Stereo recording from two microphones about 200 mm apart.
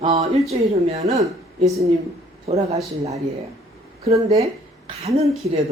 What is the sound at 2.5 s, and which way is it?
Speech, 30° right (ahead or behind).